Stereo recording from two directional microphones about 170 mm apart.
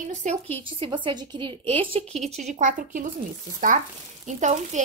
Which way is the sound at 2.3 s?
45° right (ahead or behind).